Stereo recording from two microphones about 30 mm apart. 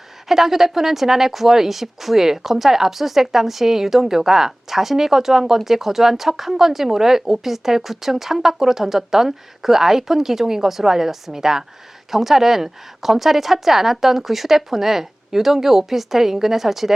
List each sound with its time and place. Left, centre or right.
0.3 s speech: centre